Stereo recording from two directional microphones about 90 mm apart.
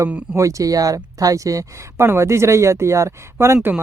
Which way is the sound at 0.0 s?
35° right (ahead or behind).